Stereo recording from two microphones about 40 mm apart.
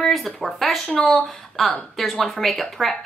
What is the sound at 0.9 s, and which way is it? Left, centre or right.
A woman's voice, centre.